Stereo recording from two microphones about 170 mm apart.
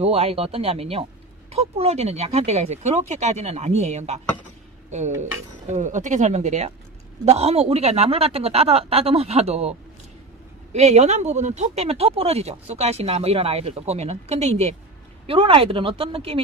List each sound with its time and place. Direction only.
0.0 s speech: 40° right (ahead or behind)
5.2 s speech: 45° right (ahead or behind)